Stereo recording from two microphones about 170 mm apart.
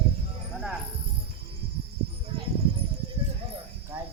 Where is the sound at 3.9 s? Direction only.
15° right (ahead or behind).